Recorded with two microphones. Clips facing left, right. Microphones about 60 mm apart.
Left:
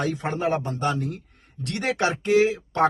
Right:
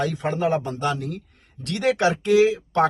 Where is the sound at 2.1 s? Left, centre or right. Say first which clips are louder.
Right 1 dB; left.